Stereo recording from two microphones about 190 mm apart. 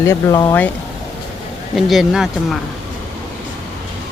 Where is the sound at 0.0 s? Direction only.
15° left (ahead or behind).